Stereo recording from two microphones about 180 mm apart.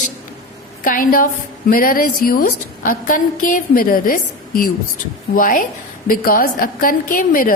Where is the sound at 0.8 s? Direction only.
50° left (ahead or behind).